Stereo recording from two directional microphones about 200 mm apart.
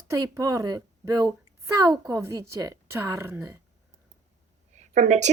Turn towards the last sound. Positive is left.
turn(degrees=-35)  # may be behind; listen again after turning